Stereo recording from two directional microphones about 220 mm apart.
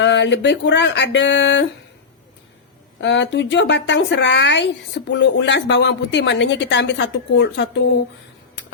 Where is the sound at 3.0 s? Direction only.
55° left (ahead or behind).